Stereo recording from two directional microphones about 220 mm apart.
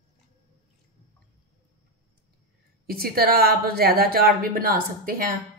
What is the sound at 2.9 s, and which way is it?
A woman's voice, 40° right (ahead or behind).